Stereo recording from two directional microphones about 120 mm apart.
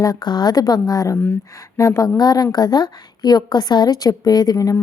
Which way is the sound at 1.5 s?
25° left (ahead or behind).